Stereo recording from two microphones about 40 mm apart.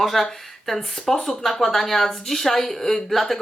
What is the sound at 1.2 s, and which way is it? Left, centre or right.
Speech, centre.